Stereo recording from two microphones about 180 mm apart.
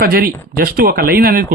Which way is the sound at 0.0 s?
55° right (ahead or behind).